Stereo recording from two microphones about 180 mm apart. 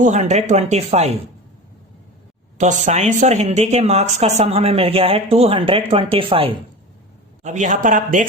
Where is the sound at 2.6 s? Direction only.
40° right (ahead or behind).